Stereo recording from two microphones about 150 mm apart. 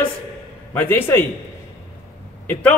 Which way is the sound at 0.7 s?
15° left (ahead or behind).